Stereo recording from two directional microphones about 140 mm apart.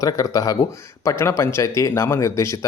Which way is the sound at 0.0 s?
25° left (ahead or behind).